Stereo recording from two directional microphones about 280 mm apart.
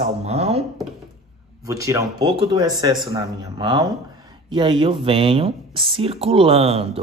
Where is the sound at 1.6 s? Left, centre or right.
Centre.